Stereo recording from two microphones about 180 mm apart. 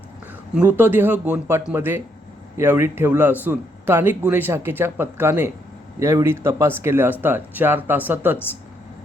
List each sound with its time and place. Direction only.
0.7 s speech: 10° right (ahead or behind)